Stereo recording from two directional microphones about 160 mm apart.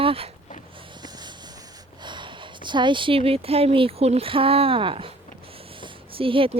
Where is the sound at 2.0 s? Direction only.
30° right (ahead or behind).